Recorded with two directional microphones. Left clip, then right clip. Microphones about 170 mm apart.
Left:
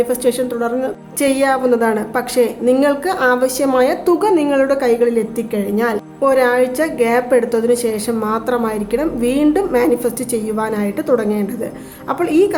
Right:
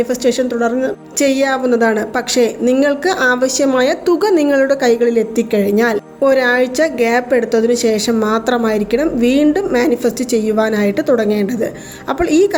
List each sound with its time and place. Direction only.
0.0 s a woman's voice: 10° right (ahead or behind)